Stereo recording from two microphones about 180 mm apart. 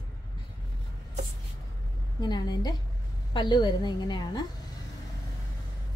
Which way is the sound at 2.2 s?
20° left (ahead or behind).